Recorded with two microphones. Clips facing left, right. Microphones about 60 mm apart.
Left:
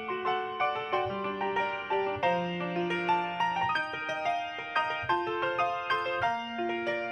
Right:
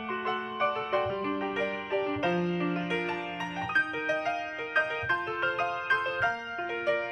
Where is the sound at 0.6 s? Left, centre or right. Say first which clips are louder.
Right 3 dB; centre.